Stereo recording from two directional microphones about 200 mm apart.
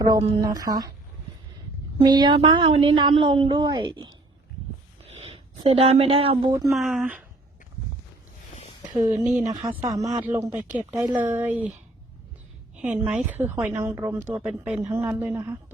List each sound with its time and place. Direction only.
0.0 s a woman's voice: 20° right (ahead or behind)
2.0 s a woman's voice: 20° right (ahead or behind)
6.7 s speech: centre (ahead or behind)
8.9 s a woman's voice: 15° right (ahead or behind)
12.8 s a woman's voice: 5° right (ahead or behind)